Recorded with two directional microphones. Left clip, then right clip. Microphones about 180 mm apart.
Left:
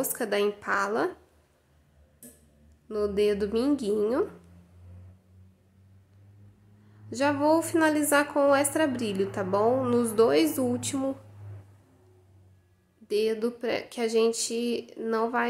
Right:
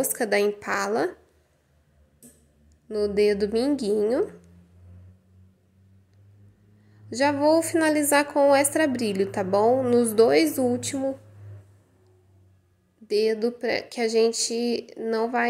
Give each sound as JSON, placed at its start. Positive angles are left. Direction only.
{"t": 0.0, "sound": "a woman's voice", "side_deg": -15}
{"t": 2.9, "sound": "a woman's voice", "side_deg": -15}
{"t": 7.1, "sound": "a woman's voice", "side_deg": -15}
{"t": 13.0, "sound": "a woman's voice", "side_deg": -10}